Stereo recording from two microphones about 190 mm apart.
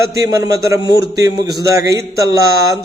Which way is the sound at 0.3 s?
20° right (ahead or behind).